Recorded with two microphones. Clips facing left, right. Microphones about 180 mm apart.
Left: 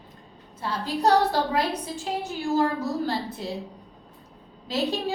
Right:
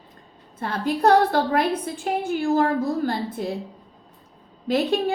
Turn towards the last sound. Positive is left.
turn(degrees=-55)  # may be behind; listen again after turning